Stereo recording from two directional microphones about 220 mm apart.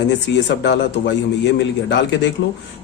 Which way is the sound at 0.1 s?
55° left (ahead or behind).